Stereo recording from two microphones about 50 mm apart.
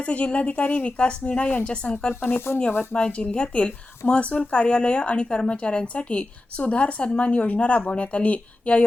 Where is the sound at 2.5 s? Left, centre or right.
Left.